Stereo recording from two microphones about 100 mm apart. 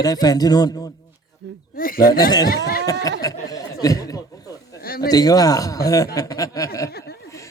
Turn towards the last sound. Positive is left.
turn(degrees=35)  # may be behind; listen again after turning